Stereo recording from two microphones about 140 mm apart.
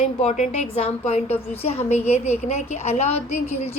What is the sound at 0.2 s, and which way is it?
A woman's voice, 55° left (ahead or behind).